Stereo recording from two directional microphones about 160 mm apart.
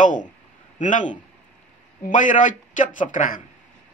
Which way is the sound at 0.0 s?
55° left (ahead or behind).